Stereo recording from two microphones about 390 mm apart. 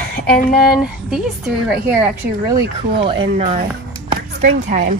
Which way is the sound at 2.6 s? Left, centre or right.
Right.